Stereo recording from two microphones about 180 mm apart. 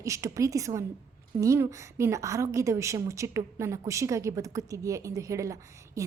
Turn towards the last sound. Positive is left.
turn(degrees=-15)  # may be behind; listen again after turning